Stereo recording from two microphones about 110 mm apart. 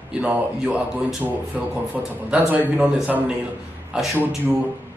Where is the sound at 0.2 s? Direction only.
10° right (ahead or behind).